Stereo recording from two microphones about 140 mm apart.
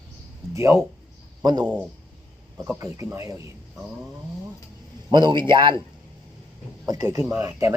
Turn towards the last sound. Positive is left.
turn(degrees=-20)  # may be behind; listen again after turning